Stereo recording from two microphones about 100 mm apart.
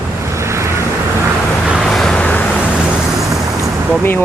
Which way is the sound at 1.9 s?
5° left (ahead or behind).